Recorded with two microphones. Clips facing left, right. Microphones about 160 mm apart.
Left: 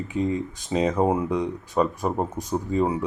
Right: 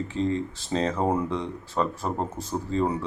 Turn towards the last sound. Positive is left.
turn(degrees=10)  # may be behind; listen again after turning